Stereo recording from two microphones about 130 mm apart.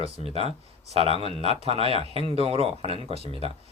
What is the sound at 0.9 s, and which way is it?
Speech, 50° right (ahead or behind).